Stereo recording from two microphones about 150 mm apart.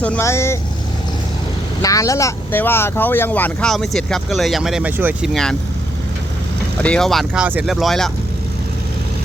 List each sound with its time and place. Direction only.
0.0 s speech: 15° left (ahead or behind)
1.8 s speech: 20° left (ahead or behind); by 5.3 s 10° right (ahead or behind)
5.3 s speech: 5° left (ahead or behind)
6.7 s speech: 5° left (ahead or behind)